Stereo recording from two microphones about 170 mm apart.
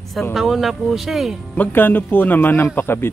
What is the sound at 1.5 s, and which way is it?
A man's voice, 10° left (ahead or behind).